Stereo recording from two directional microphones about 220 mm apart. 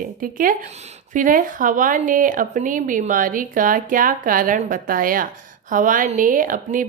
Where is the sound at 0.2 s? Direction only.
40° right (ahead or behind).